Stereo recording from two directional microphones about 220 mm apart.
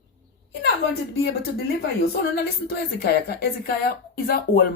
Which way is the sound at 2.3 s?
45° left (ahead or behind).